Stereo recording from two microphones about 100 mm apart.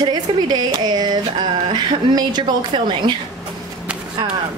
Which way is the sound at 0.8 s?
45° right (ahead or behind).